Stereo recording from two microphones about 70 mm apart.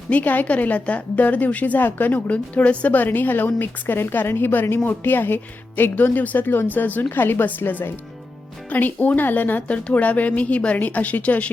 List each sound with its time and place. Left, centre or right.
0.1 s a woman's voice: left